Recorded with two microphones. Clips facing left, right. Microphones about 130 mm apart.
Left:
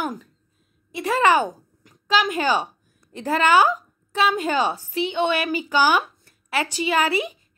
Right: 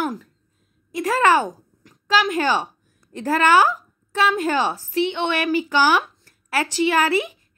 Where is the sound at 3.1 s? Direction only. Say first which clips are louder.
Right 1 dB; 15° left (ahead or behind).